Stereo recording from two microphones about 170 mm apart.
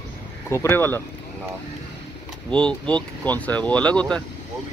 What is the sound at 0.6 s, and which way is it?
Speech, 15° left (ahead or behind).